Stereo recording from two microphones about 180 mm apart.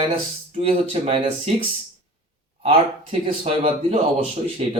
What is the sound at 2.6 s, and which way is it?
Speech, 30° right (ahead or behind).